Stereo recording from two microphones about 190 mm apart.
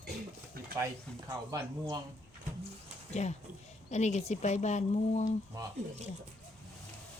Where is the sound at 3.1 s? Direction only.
35° left (ahead or behind).